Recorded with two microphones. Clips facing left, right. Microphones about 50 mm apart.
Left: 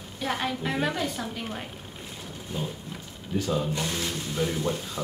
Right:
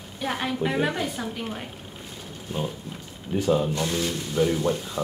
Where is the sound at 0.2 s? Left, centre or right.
Centre.